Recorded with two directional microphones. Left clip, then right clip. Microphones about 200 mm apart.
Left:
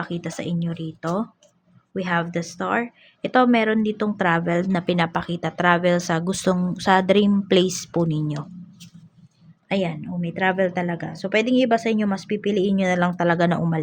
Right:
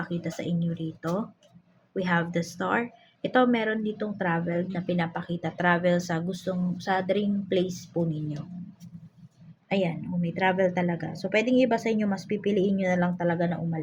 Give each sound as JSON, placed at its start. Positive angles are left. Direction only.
{"t": 0.0, "sound": "speech", "side_deg": 20}
{"t": 9.6, "sound": "speech", "side_deg": 15}